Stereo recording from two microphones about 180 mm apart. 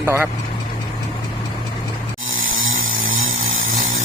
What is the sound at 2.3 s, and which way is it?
Chainsaw, 90° right.